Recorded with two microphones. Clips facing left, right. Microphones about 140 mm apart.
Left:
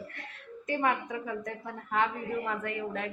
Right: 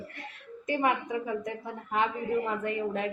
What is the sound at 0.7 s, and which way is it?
A woman's voice, 15° right (ahead or behind).